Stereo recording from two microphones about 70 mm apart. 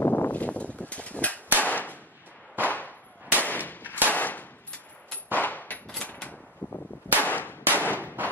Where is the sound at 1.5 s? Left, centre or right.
Left.